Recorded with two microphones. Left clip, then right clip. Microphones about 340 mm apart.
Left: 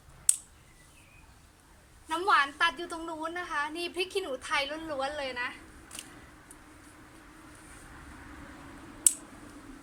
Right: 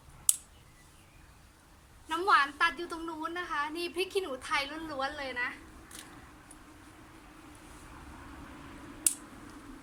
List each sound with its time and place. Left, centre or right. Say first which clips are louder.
2.0 s a woman's voice: even; centre